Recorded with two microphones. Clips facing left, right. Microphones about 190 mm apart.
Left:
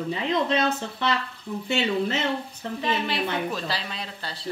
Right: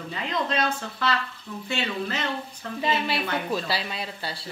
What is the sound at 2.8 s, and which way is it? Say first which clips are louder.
Speech: even; 10° right (ahead or behind).